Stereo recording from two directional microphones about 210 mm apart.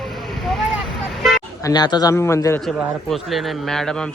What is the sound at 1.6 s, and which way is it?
Speech, 20° left (ahead or behind).